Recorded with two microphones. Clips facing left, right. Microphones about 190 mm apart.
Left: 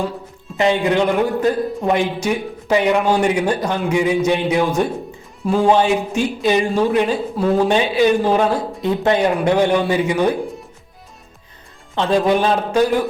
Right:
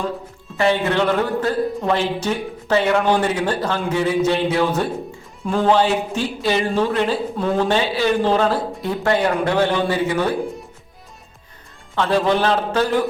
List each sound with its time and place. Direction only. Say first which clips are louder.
0.5 s speech: left 2 dB; 15° left (ahead or behind)
11.9 s speech: left 2 dB; 15° left (ahead or behind)